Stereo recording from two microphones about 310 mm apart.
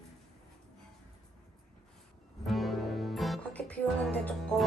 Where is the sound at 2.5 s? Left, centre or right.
Centre.